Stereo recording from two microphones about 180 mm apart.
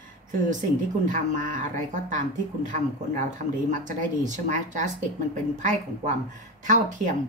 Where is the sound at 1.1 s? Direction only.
45° right (ahead or behind).